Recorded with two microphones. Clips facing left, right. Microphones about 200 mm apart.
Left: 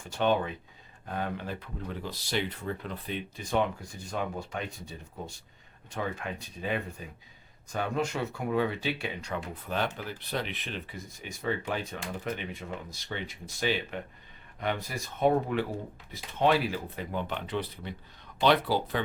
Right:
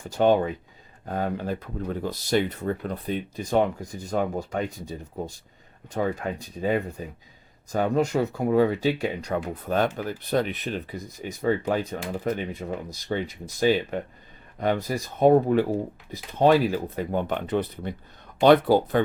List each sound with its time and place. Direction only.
0.1 s speech: 40° right (ahead or behind)